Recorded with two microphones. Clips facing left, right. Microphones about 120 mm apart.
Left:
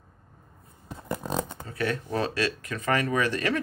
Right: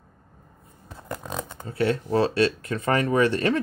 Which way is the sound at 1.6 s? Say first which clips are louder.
Right 5 dB; 25° right (ahead or behind).